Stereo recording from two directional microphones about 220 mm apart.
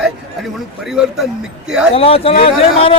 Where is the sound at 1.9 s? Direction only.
25° left (ahead or behind).